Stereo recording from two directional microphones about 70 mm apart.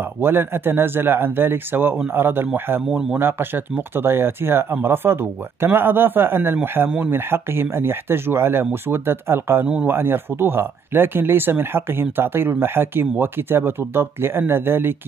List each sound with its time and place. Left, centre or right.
0.0 s speech: right